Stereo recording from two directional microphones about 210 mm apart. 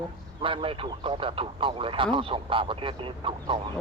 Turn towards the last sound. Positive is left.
turn(degrees=-25)  # may be behind; listen again after turning